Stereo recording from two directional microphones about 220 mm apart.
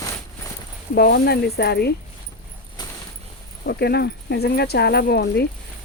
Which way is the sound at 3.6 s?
45° left (ahead or behind).